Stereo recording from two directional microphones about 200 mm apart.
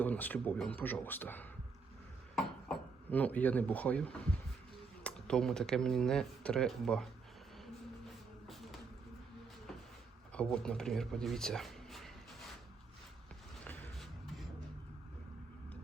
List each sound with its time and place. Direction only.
0.0 s speech: 10° left (ahead or behind)
5.0 s speech: 5° left (ahead or behind)
8.4 s a sound: centre (ahead or behind)
10.3 s speech: 5° left (ahead or behind)
13.7 s music: centre (ahead or behind)